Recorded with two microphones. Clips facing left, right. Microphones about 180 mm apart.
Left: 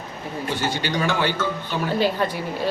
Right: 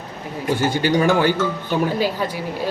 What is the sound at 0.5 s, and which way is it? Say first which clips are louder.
Speech: right 8 dB; 50° right (ahead or behind).